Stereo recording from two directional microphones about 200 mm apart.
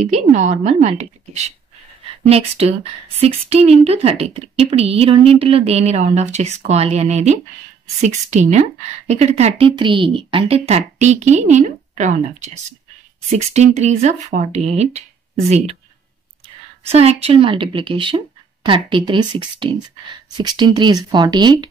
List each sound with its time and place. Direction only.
0.0 s speech: 35° right (ahead or behind)
16.9 s speech: 30° right (ahead or behind)